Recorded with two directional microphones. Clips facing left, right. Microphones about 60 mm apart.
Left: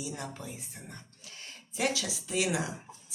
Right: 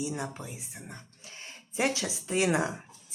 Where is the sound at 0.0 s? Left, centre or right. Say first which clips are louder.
Right 4 dB; centre.